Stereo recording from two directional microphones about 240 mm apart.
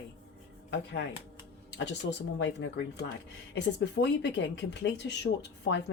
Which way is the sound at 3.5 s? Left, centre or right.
Left.